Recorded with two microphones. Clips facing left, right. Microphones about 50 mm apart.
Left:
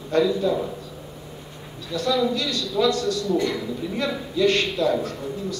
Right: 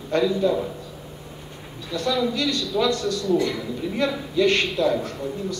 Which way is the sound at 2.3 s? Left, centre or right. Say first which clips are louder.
Right 1 dB; right.